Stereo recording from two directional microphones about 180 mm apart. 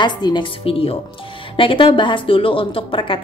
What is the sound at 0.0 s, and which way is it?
A woman's voice, 25° left (ahead or behind).